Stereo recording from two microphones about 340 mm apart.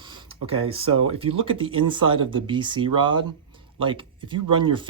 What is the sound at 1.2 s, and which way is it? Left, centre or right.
Speech, centre.